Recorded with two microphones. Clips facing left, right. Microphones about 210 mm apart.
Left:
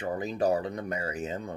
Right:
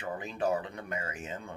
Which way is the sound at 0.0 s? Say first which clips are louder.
Left 5 dB; 40° left (ahead or behind).